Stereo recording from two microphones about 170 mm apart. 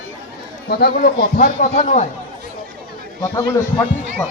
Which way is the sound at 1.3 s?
45° left (ahead or behind).